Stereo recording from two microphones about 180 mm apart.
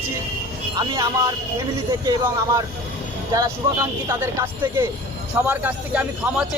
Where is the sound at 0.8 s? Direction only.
25° right (ahead or behind); by 6.6 s 5° right (ahead or behind).